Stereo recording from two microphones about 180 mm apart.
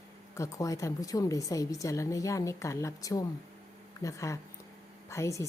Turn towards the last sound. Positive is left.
turn(degrees=15)  # may be behind; listen again after turning